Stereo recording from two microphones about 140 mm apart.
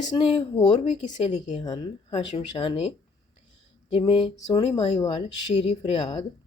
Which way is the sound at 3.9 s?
40° left (ahead or behind).